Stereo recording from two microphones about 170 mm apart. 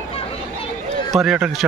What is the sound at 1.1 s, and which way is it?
Speech, 5° right (ahead or behind).